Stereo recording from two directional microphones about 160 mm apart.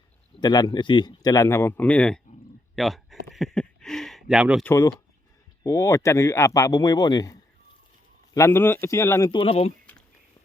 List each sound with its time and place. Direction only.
0.3 s speech: 25° left (ahead or behind); by 4.6 s 5° right (ahead or behind)
4.6 s speech: 15° left (ahead or behind)
9.3 s speech: 35° left (ahead or behind)